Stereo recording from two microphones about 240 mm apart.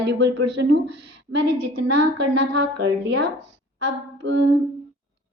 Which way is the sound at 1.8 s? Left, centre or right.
Right.